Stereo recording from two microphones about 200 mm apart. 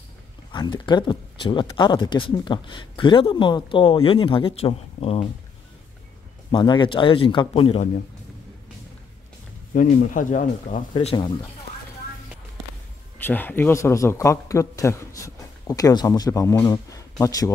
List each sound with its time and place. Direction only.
0.5 s speech: 20° left (ahead or behind)
6.5 s speech: 20° left (ahead or behind)
9.8 s speech: 40° left (ahead or behind)
13.2 s speech: 10° left (ahead or behind)